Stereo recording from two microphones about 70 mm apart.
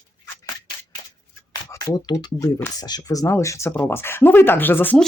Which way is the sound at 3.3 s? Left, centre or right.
Left.